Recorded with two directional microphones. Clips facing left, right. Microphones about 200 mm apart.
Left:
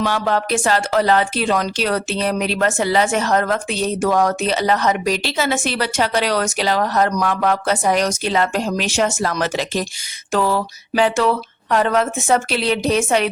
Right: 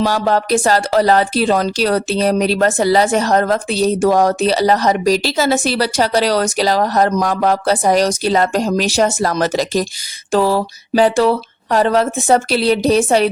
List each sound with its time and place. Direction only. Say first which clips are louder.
0.0 s speech: right 4 dB; 35° right (ahead or behind)